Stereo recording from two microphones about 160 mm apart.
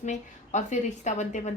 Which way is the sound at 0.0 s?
50° left (ahead or behind).